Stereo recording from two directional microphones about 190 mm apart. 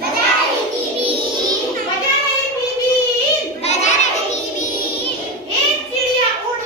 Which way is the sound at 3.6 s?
35° left (ahead or behind).